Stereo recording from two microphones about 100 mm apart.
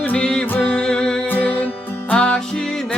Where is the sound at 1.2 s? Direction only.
20° left (ahead or behind).